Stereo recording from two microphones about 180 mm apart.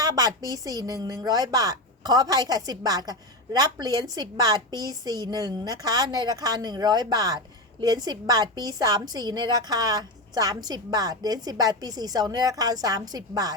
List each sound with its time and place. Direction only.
0.0 s speech: 20° right (ahead or behind)